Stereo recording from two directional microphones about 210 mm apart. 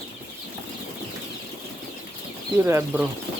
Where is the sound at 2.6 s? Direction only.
15° right (ahead or behind).